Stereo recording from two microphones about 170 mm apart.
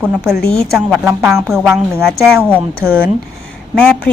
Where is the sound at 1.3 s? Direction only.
15° right (ahead or behind).